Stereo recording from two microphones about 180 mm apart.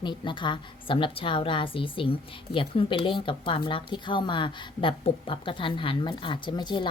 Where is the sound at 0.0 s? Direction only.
25° left (ahead or behind).